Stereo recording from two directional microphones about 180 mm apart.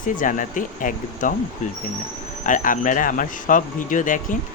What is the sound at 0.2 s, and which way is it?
Speech, 45° left (ahead or behind).